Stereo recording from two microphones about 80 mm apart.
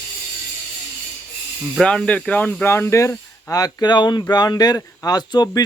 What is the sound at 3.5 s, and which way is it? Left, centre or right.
Speech, left.